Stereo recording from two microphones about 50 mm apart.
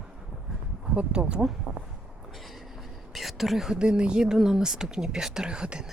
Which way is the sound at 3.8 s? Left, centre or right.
Right.